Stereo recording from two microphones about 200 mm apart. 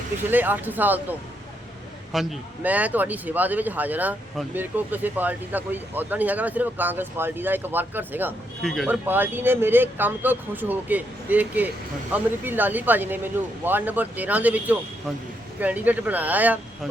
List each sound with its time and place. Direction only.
0.3 s speech: 10° right (ahead or behind)
2.1 s speech: 5° right (ahead or behind)
8.6 s speech: centre (ahead or behind)
9.0 s speech: 10° right (ahead or behind)